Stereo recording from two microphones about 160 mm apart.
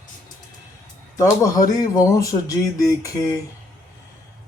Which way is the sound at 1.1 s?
20° left (ahead or behind).